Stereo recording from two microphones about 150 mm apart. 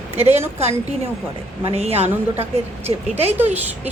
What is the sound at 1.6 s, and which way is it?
A woman's voice, 40° right (ahead or behind).